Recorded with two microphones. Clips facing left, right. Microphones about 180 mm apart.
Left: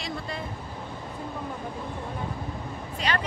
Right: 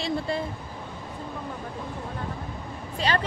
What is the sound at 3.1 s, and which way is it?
Speech, 30° right (ahead or behind).